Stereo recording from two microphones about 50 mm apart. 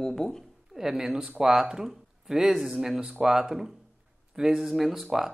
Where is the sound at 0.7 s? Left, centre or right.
Centre.